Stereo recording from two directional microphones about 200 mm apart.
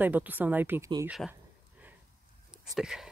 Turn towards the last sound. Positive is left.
turn(degrees=0)  # may be behind; listen again after turning